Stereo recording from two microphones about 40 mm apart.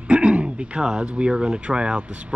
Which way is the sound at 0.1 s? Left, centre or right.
Right.